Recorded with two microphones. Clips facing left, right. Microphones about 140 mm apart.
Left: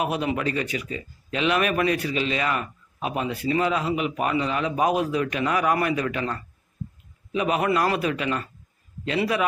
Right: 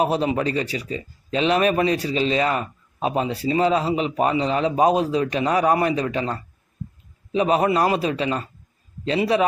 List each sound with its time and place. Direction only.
0.0 s speech: 30° right (ahead or behind)